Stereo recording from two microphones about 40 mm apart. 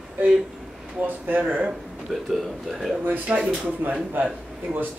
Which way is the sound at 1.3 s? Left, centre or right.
Right.